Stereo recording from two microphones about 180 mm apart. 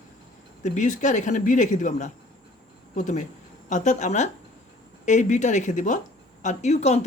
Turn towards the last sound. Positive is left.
turn(degrees=40)  # may be behind; listen again after turning